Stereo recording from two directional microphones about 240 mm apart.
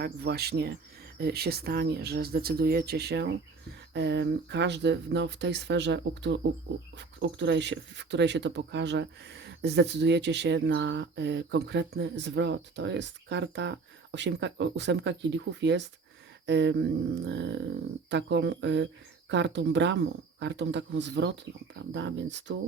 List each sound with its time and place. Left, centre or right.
0.0 s speech: right